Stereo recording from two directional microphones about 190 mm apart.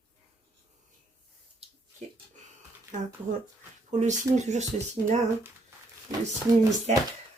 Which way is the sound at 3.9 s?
40° right (ahead or behind).